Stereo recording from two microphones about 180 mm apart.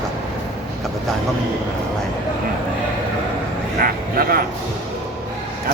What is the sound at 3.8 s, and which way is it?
Speech, 55° right (ahead or behind).